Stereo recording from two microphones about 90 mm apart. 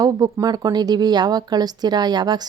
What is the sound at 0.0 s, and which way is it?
Speech, 45° right (ahead or behind).